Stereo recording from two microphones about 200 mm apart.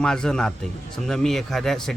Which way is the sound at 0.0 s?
5° left (ahead or behind).